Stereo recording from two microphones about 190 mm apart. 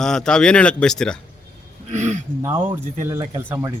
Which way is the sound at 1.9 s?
35° right (ahead or behind).